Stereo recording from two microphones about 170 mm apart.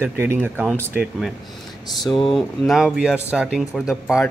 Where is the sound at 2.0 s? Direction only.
30° left (ahead or behind).